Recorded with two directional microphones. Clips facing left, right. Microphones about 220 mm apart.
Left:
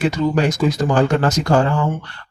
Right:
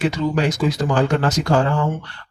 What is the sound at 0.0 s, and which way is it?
Speech, 45° left (ahead or behind).